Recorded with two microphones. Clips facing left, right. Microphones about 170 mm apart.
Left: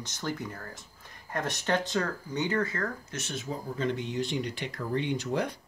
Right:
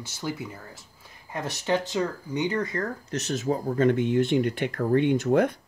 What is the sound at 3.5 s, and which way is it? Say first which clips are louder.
Speech: right 9 dB; 50° right (ahead or behind).